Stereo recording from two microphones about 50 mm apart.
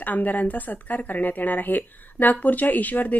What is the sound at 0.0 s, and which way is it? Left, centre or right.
Speech, left.